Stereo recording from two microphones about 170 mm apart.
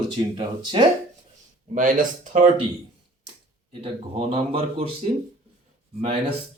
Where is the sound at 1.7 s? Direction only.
50° right (ahead or behind).